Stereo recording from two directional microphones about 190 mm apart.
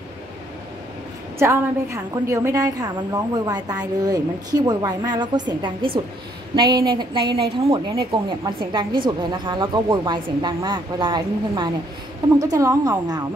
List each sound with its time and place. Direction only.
1.4 s a woman's voice: 15° right (ahead or behind)